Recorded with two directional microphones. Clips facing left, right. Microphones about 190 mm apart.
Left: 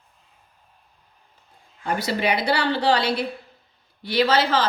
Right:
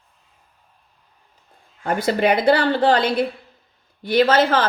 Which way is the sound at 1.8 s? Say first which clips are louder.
Right 5 dB; 50° right (ahead or behind).